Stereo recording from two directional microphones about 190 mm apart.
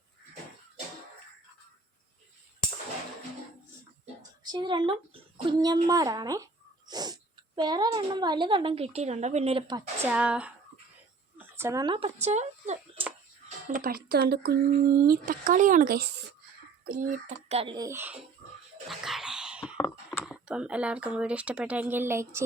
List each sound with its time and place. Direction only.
4.5 s speech: 25° right (ahead or behind)
10.0 s speech: 10° right (ahead or behind)
11.3 s a sound: 15° right (ahead or behind); by 13.1 s 35° right (ahead or behind)
13.7 s speech: 45° right (ahead or behind)
17.7 s speech: 15° right (ahead or behind)
18.9 s a sound: centre (ahead or behind)
19.7 s computer keyboard: 10° left (ahead or behind)
20.2 s speech: 5° right (ahead or behind)